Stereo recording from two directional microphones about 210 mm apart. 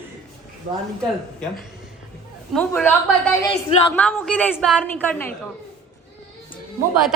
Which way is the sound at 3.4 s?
20° left (ahead or behind).